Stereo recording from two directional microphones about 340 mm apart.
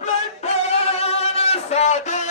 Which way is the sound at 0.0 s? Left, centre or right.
Centre.